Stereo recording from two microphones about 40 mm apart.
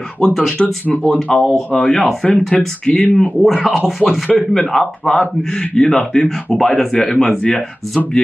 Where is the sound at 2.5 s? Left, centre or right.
Centre.